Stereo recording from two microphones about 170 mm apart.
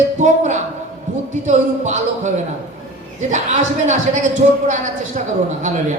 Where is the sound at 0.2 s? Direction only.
45° right (ahead or behind).